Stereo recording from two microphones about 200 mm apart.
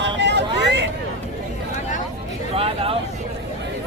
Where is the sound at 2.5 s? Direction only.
30° right (ahead or behind).